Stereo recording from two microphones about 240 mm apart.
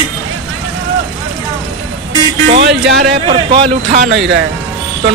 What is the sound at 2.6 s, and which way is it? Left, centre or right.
Speech, right.